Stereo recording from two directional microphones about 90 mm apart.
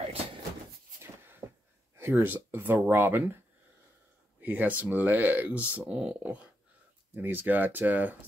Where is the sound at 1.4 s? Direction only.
30° right (ahead or behind).